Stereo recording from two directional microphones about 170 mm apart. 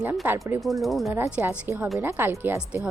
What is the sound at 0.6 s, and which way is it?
Speech, centre (ahead or behind).